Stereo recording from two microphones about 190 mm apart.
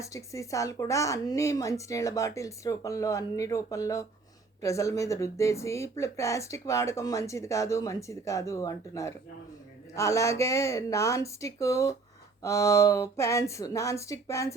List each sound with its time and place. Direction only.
0.0 s speech: 15° left (ahead or behind)